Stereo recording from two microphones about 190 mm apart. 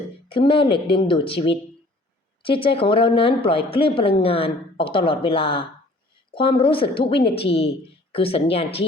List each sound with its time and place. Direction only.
0.3 s speech: 25° left (ahead or behind)